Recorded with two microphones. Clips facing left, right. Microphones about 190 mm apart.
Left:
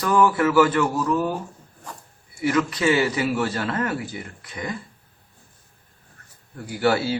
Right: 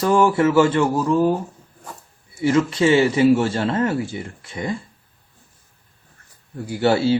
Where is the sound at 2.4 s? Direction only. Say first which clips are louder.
Right 4 dB; 25° right (ahead or behind).